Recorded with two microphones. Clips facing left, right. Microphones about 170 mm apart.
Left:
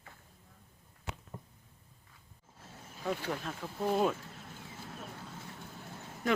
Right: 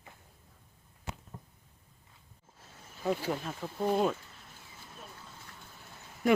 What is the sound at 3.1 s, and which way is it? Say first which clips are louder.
Speech: right 3 dB; 5° right (ahead or behind).